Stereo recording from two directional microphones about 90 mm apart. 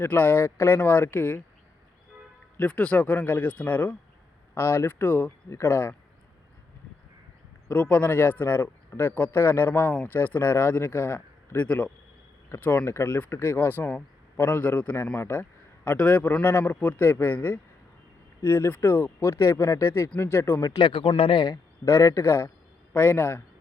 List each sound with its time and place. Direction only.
0.0 s speech: 25° left (ahead or behind)
2.6 s a man's voice: 15° left (ahead or behind)
7.7 s speech: 20° left (ahead or behind)
12.8 s speech: 30° left (ahead or behind)
20.6 s speech: 55° left (ahead or behind); by 21.1 s 70° left (ahead or behind)
21.2 s speech: 85° left
21.4 s speech: 40° left (ahead or behind)
22.9 s speech: 20° left (ahead or behind)